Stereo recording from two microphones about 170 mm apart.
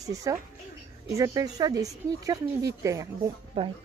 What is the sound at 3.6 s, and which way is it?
Speech, 35° right (ahead or behind).